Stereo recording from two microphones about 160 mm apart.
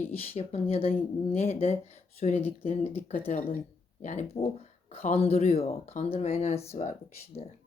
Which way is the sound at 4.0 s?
45° left (ahead or behind).